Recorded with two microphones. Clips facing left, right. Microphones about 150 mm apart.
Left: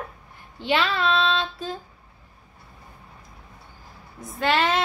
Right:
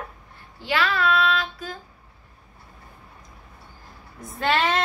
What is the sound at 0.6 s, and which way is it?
Child singing, 20° left (ahead or behind).